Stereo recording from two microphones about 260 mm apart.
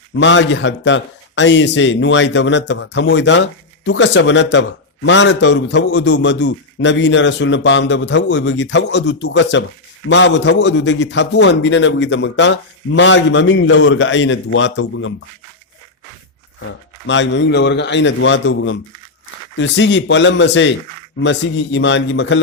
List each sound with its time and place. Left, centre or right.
0.1 s a man's voice: left
16.6 s a man's voice: left